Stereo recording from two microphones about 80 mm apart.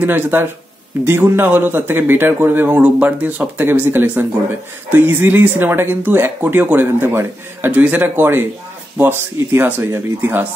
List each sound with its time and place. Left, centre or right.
0.0 s speech: right